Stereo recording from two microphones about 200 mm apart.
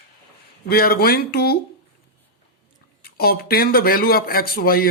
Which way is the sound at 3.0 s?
50° left (ahead or behind).